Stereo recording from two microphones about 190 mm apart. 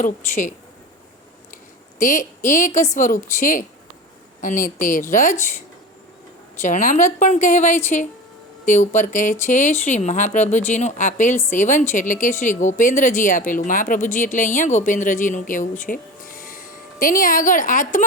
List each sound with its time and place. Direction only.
0.0 s speech: 45° left (ahead or behind)
2.0 s speech: 45° left (ahead or behind)
6.6 s a woman's voice: 40° left (ahead or behind)